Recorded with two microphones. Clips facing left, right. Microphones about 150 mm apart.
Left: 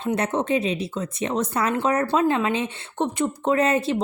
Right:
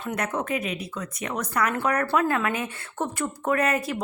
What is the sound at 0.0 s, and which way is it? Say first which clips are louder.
Speech: left 5 dB; 30° left (ahead or behind).